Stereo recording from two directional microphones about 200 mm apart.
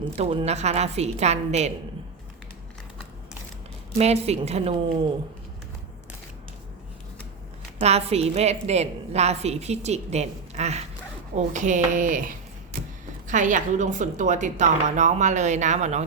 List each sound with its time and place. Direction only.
0.2 s a woman's voice: 30° right (ahead or behind)
3.9 s a woman's voice: 30° right (ahead or behind)
7.8 s a woman's voice: 30° right (ahead or behind)